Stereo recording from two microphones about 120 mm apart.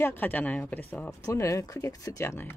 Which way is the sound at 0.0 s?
15° left (ahead or behind).